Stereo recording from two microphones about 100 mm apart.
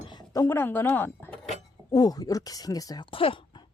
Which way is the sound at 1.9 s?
40° left (ahead or behind).